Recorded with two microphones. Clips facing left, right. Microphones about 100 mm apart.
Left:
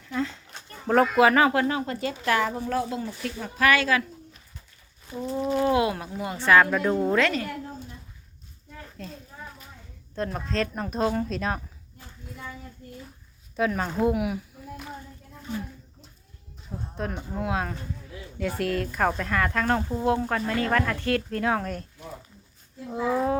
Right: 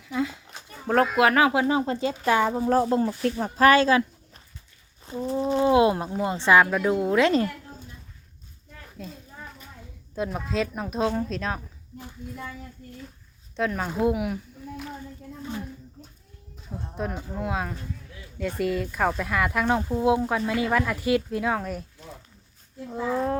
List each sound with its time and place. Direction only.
0.0 s a sound: 10° right (ahead or behind)
1.5 s speech: 20° right (ahead or behind)
5.0 s a sound: 30° right (ahead or behind)
5.4 s speech: 25° right (ahead or behind); by 7.2 s 5° right (ahead or behind)
9.0 s a sound: 5° right (ahead or behind)
10.2 s speech: 5° right (ahead or behind)
13.6 s speech: centre (ahead or behind)
16.6 s speech: centre (ahead or behind)
22.9 s speech: 5° left (ahead or behind)